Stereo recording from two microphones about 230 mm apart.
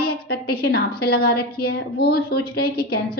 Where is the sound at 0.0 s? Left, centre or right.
Left.